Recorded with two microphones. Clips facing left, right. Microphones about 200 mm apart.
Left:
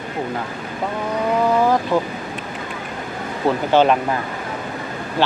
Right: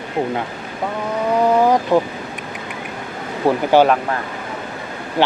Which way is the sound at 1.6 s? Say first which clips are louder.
Right 3 dB; 20° right (ahead or behind).